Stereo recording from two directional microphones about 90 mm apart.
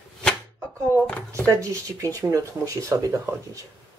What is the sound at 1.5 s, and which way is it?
Speech, 35° right (ahead or behind).